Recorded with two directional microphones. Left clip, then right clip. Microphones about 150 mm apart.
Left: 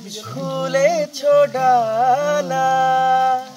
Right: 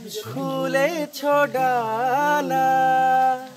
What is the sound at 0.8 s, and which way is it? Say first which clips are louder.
Music: left 6 dB; 30° right (ahead or behind).